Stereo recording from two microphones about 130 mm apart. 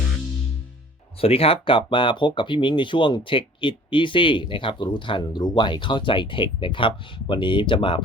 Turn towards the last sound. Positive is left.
turn(degrees=40)  # may be behind; listen again after turning